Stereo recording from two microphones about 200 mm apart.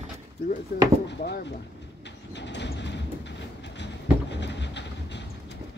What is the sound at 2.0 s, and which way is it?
Train, 60° left (ahead or behind).